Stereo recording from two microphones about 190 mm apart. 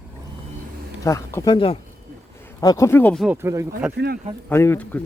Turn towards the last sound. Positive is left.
turn(degrees=10)  # may be behind; listen again after turning